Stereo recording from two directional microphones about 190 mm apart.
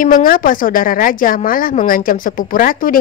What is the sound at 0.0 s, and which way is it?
Speech, 50° left (ahead or behind).